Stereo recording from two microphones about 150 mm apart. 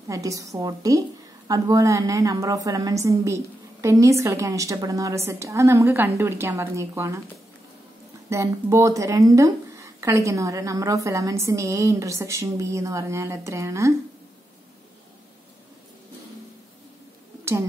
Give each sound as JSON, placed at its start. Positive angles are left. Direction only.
{"t": 0.1, "sound": "a woman's voice", "side_deg": -20}
{"t": 8.3, "sound": "a woman's voice", "side_deg": -20}